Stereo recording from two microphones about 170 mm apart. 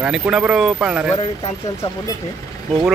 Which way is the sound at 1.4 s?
20° left (ahead or behind).